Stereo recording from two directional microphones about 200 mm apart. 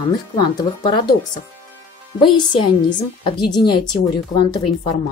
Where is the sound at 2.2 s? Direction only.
25° left (ahead or behind).